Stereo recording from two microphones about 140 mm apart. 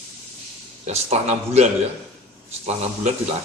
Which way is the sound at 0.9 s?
50° right (ahead or behind).